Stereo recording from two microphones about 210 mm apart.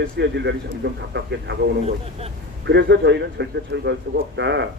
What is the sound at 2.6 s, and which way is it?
A man's voice, 55° right (ahead or behind).